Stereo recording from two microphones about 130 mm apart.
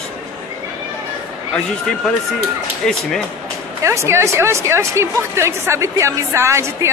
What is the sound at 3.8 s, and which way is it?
A woman's voice, 20° right (ahead or behind).